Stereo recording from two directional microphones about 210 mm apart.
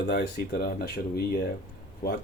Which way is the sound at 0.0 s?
50° left (ahead or behind).